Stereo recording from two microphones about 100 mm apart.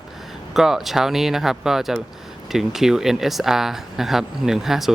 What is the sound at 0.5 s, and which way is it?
Speech, 5° right (ahead or behind).